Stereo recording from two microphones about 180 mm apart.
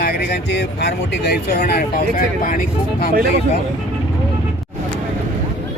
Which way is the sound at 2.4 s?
50° left (ahead or behind).